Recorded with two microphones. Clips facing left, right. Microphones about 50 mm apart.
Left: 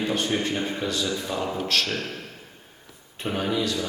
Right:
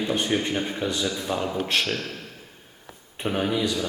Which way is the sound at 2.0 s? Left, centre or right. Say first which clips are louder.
Left 1 dB; left.